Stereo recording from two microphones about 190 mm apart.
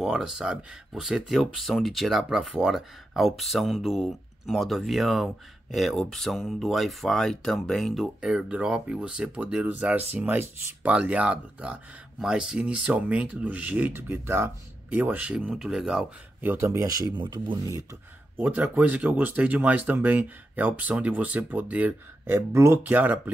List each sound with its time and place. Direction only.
0.0 s speech: 5° right (ahead or behind); by 17.8 s 20° right (ahead or behind)
18.4 s speech: 10° right (ahead or behind)